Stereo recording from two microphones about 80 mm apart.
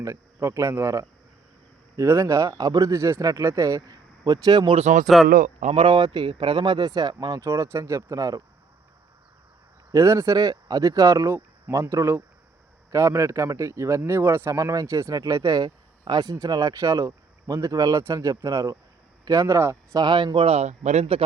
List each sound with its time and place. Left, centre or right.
0.0 s a man's voice: right
2.5 s speech: right
5.0 s speech: centre
5.8 s speech: right
7.3 s speech: right
9.9 s speech: right
14.5 s speech: right
19.9 s speech: right